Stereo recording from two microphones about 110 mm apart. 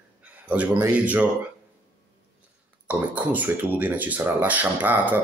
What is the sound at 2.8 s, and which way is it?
Speech, 15° right (ahead or behind).